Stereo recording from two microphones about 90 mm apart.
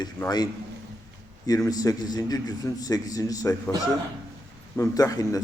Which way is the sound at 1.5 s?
40° left (ahead or behind).